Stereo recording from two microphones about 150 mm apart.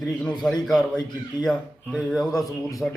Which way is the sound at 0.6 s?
5° left (ahead or behind).